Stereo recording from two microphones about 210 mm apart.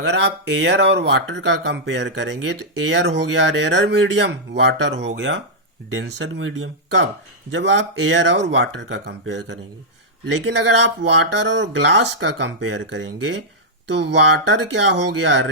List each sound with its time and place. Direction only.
0.0 s speech: 55° right (ahead or behind)
5.9 s speech: 65° right (ahead or behind)